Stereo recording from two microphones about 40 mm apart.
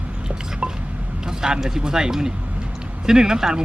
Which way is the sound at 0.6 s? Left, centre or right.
Right.